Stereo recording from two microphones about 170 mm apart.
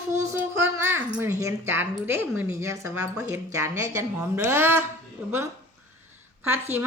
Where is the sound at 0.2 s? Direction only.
15° right (ahead or behind).